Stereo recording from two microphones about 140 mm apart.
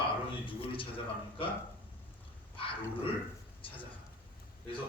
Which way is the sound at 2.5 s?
40° left (ahead or behind).